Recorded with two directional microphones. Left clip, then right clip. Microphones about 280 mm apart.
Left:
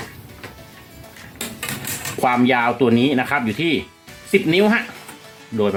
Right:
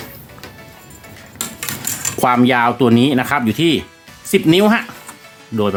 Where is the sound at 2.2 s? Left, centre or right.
Right.